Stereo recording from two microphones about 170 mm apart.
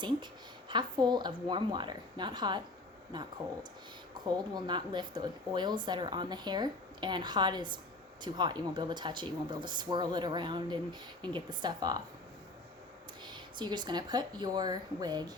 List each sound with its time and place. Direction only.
0.7 s speech: 25° right (ahead or behind)
13.2 s speech: 25° right (ahead or behind)